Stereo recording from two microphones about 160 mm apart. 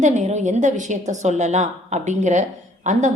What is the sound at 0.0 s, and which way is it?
A woman's voice, 45° right (ahead or behind).